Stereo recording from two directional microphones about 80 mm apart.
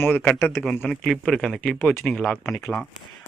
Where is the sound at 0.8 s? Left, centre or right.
Centre.